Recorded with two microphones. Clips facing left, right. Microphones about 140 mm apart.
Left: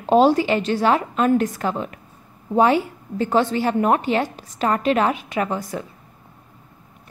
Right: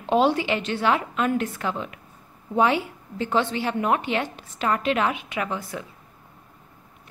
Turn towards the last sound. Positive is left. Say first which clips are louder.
# left 5 dB
turn(degrees=40)  # may be behind; listen again after turning